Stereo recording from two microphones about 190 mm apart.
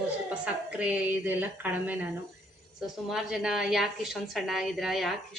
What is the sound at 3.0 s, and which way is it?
A woman's voice, 5° right (ahead or behind).